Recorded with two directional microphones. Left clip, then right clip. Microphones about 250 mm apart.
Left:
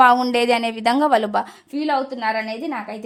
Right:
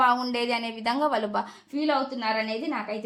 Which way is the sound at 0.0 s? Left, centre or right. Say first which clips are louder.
Left 9 dB; left.